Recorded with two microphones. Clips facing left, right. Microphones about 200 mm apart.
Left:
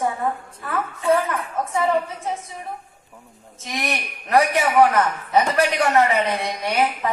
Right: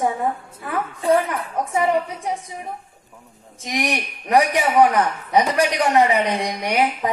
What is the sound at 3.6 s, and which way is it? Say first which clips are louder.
A man's voice: right 4 dB; 15° right (ahead or behind).